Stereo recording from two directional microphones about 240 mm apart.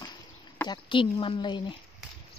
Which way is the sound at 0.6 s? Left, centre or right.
Left.